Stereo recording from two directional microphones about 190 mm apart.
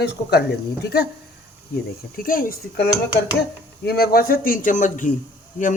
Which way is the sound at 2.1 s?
50° left (ahead or behind).